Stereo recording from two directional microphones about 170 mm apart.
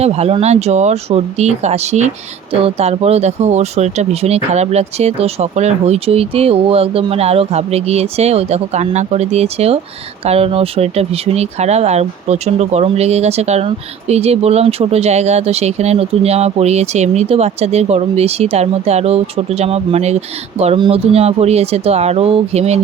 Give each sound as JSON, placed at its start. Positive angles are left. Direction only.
{"t": 0.0, "sound": "speech", "side_deg": -35}